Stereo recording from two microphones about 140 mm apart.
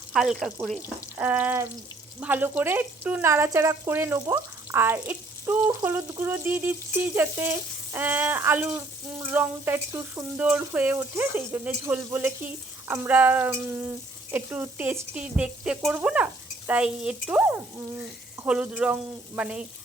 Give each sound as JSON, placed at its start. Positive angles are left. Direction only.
{"t": 0.1, "sound": "speech", "side_deg": 0}
{"t": 1.1, "sound": "speech", "side_deg": -10}